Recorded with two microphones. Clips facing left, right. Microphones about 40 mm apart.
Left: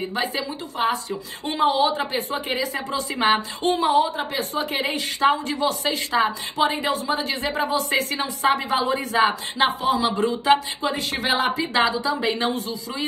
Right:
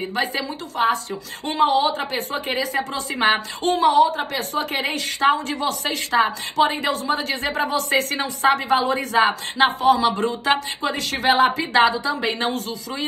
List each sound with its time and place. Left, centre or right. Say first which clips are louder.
1.4 s a woman's voice: right 2 dB; right